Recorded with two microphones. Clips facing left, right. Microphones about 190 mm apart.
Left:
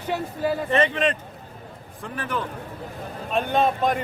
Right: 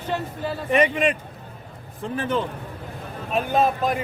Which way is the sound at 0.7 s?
10° right (ahead or behind).